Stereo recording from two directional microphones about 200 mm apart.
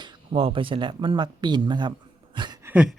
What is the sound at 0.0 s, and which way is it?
Speech, 25° right (ahead or behind).